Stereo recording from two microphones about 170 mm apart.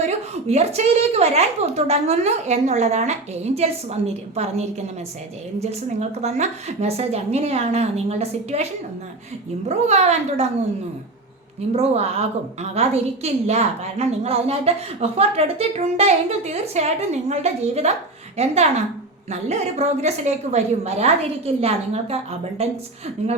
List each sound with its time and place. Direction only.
0.0 s a woman's voice: 40° right (ahead or behind)
9.6 s a woman's voice: 40° right (ahead or behind)
11.7 s a woman's voice: 40° right (ahead or behind)